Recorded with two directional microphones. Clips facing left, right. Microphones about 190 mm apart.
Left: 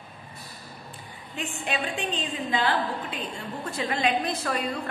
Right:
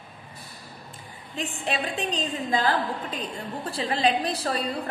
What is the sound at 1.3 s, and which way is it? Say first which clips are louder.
A woman's voice: right 2 dB; 35° right (ahead or behind).